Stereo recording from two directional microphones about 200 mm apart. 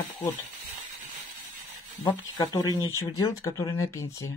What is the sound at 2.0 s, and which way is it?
Speech, 15° left (ahead or behind).